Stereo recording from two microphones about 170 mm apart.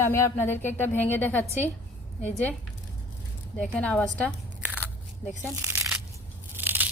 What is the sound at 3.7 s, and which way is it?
Speech, 5° left (ahead or behind).